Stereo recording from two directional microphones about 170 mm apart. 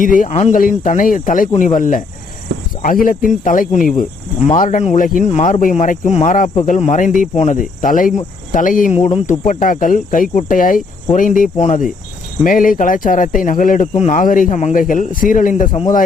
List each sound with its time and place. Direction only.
0.0 s a man's voice: 50° left (ahead or behind)